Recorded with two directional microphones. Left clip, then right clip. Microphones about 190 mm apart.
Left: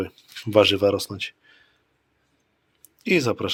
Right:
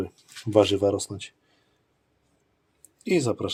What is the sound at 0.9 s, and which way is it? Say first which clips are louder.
Speech: left 3 dB; 25° left (ahead or behind).